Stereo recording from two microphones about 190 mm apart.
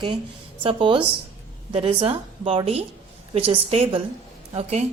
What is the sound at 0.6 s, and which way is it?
A woman's voice, 30° right (ahead or behind).